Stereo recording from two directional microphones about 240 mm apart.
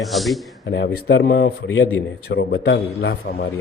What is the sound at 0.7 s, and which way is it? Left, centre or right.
A man's voice, left.